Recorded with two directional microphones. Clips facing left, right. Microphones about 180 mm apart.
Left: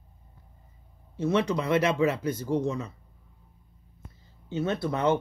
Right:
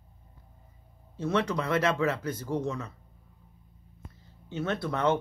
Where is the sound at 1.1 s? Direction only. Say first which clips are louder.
Left 3 dB; 15° left (ahead or behind).